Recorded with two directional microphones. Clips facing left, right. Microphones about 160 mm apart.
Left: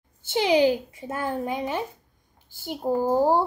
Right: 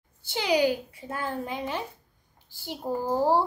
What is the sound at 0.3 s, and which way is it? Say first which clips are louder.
A child's voice: left 4 dB; 20° left (ahead or behind).